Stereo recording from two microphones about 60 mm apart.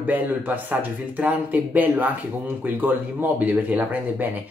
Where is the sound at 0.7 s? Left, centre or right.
Right.